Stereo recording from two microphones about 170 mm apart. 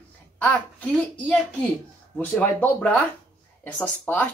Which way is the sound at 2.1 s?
10° left (ahead or behind).